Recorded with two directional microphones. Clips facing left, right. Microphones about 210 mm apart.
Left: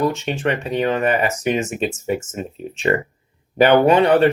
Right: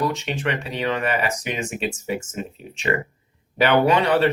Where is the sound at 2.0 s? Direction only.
40° left (ahead or behind).